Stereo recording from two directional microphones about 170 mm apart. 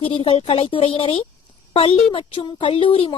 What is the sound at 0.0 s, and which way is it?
Speech, 35° left (ahead or behind).